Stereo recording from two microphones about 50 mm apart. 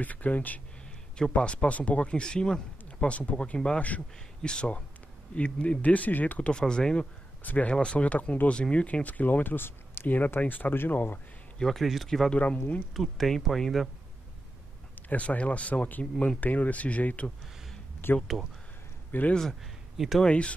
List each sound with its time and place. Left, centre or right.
0.0 s speech: left
1.1 s speech: centre
6.6 s speech: centre
7.4 s speech: left
10.0 s speech: left
11.6 s speech: centre
12.4 s speech: left
12.9 s speech: centre
15.0 s speech: left
18.0 s speech: left
19.6 s speech: centre
20.2 s speech: left